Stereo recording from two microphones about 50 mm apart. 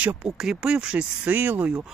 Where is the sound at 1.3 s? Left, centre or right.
Right.